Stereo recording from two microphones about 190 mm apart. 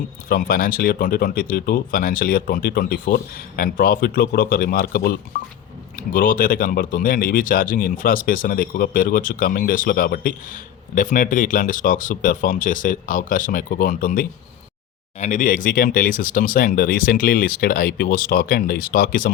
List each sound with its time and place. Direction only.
0.3 s speech: 50° left (ahead or behind)